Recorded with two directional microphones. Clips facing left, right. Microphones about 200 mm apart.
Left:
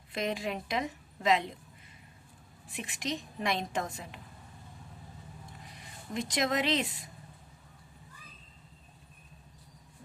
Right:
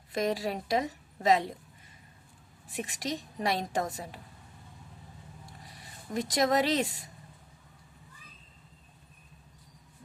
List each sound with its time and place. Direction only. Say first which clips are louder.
0.1 s a woman's voice: right 3 dB; 40° right (ahead or behind)
2.6 s a woman's voice: right 2 dB; 40° right (ahead or behind)
6.1 s a woman's voice: right 4 dB; 40° right (ahead or behind)